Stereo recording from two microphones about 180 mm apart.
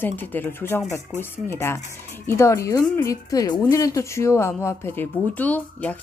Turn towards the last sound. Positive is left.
turn(degrees=10)  # may be behind; listen again after turning